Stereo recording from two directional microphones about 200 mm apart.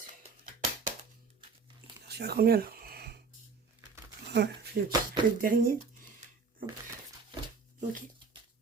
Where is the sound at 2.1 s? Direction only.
55° right (ahead or behind).